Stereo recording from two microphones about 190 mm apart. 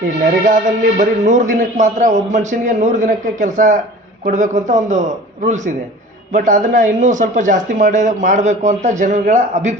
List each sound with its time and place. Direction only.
0.4 s a man's voice: 40° right (ahead or behind)
6.3 s a man's voice: 40° right (ahead or behind)